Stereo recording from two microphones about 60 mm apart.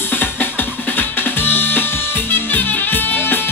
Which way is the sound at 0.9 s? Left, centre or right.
Left.